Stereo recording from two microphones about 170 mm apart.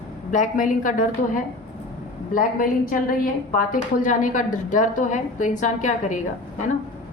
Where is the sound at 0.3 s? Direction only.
50° left (ahead or behind).